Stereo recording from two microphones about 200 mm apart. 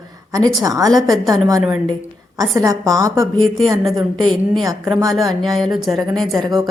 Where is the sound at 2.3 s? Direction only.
15° right (ahead or behind).